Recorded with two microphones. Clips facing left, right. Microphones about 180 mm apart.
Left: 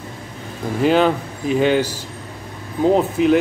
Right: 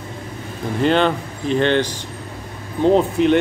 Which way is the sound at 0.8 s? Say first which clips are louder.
Left 2 dB; 5° left (ahead or behind).